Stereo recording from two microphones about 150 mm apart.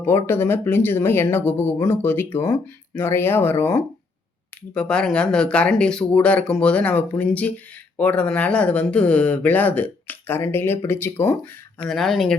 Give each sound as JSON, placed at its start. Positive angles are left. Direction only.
{"t": 0.0, "sound": "speech", "side_deg": 15}